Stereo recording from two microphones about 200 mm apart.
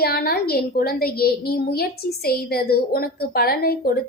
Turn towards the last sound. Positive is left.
turn(degrees=50)  # may be behind; listen again after turning